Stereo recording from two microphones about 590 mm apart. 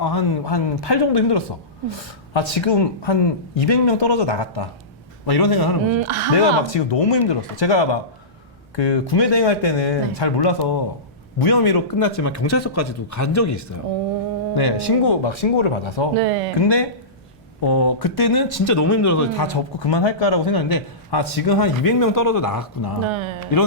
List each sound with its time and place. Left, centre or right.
0.0 s a man's voice: left
5.9 s speech: right
6.3 s speech: left
14.5 s speech: left
16.1 s speech: right
17.6 s a man's voice: left
19.5 s a man's voice: left
23.0 s speech: right